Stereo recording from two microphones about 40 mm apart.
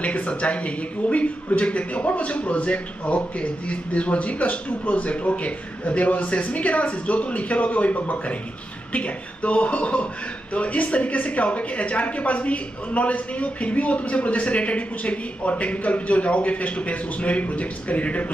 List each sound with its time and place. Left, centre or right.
0.0 s speech: left